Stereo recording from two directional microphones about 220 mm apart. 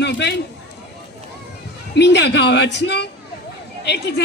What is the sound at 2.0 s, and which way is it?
A woman's voice, 50° left (ahead or behind).